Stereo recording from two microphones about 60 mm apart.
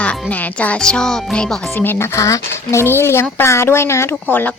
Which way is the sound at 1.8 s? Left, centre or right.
Left.